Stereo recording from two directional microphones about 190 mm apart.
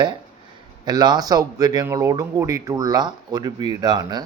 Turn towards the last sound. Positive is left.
turn(degrees=-20)  # may be behind; listen again after turning